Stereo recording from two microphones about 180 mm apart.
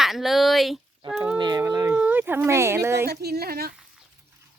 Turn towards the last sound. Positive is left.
turn(degrees=-60)  # may be behind; listen again after turning